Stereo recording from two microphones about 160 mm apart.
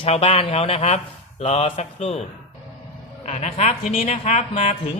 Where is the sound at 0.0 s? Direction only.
35° left (ahead or behind).